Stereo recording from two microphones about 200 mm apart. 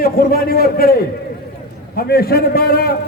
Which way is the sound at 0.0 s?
45° left (ahead or behind).